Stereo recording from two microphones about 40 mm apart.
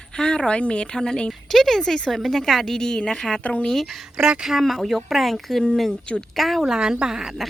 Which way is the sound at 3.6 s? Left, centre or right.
Centre.